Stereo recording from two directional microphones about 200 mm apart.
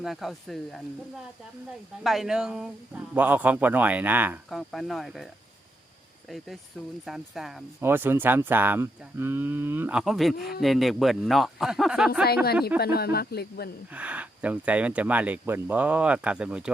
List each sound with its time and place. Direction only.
0.0 s speech: centre (ahead or behind)
2.0 s speech: centre (ahead or behind)
12.8 s speech: 50° left (ahead or behind)
13.9 s speech: 5° right (ahead or behind)